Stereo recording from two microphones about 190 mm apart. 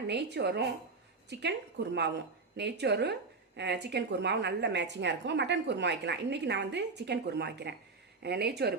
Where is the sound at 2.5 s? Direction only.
65° right (ahead or behind).